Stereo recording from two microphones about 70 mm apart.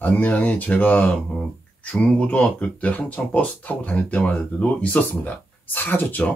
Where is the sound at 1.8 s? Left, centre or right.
Centre.